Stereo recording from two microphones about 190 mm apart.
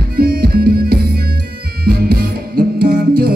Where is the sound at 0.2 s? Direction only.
55° right (ahead or behind).